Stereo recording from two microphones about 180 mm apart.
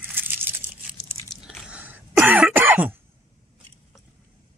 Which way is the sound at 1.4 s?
5° right (ahead or behind).